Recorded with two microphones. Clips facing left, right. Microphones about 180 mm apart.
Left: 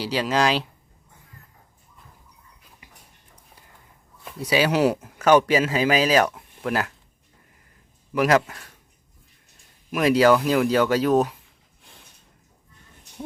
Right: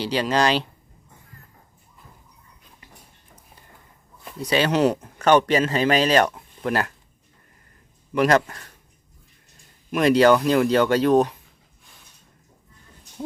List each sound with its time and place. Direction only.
0.0 s speech: 5° left (ahead or behind)
1.3 s a sound: 20° left (ahead or behind)
4.2 s speech: 5° left (ahead or behind)
8.1 s speech: 5° left (ahead or behind)
9.9 s speech: 5° left (ahead or behind)